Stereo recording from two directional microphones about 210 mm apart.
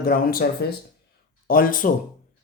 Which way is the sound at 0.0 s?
45° left (ahead or behind).